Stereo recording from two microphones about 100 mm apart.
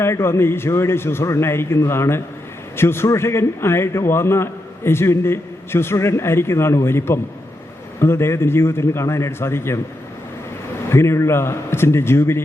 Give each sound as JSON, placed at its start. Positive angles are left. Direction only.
{"t": 0.0, "sound": "a man's voice", "side_deg": 25}
{"t": 10.8, "sound": "a man's voice", "side_deg": 25}